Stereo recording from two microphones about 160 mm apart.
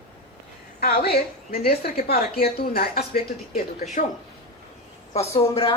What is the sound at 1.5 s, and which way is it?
Speech, 70° left (ahead or behind).